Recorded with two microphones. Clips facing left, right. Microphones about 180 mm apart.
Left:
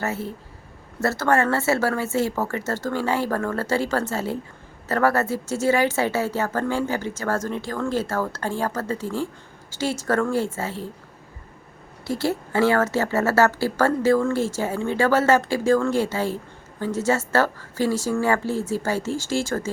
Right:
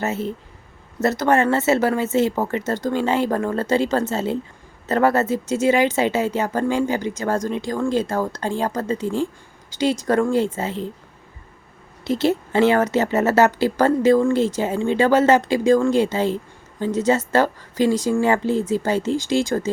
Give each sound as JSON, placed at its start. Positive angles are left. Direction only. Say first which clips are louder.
{"t": 0.0, "sound": "a woman's voice", "louder": "right 4 dB", "side_deg": -20}
{"t": 12.0, "sound": "a woman's voice", "louder": "right 5 dB", "side_deg": -20}